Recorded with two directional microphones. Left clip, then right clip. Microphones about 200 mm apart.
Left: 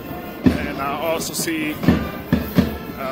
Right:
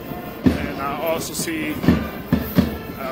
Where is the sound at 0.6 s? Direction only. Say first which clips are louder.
Left 1 dB; 10° left (ahead or behind).